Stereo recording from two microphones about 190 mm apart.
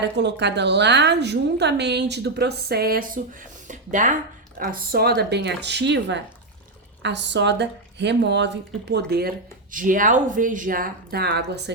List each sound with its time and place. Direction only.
0.0 s a woman's voice: 65° right (ahead or behind)
9.7 s speech: 45° right (ahead or behind); by 11.7 s 60° right (ahead or behind)